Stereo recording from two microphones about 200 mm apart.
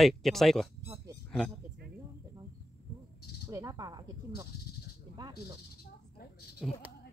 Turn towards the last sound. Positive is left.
turn(degrees=5)  # may be behind; listen again after turning